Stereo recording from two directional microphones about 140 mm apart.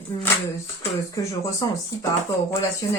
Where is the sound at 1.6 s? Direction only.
30° left (ahead or behind).